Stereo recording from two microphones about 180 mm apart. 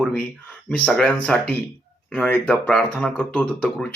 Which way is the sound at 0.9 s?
5° left (ahead or behind).